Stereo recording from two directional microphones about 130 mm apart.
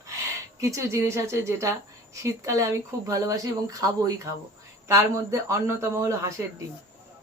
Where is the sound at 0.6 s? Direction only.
20° right (ahead or behind).